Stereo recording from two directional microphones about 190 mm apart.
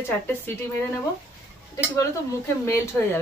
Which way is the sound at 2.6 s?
15° left (ahead or behind).